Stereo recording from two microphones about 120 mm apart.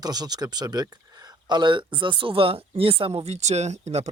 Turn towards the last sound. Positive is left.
turn(degrees=-65)  # may be behind; listen again after turning